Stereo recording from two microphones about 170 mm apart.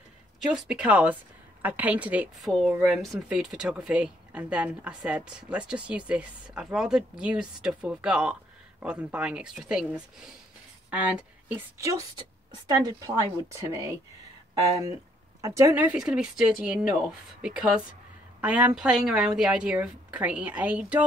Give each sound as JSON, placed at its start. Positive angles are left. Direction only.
{"t": 0.7, "sound": "a woman's voice", "side_deg": -10}